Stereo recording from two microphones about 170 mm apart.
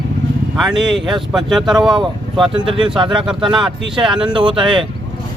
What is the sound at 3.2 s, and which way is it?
Speech, 5° right (ahead or behind).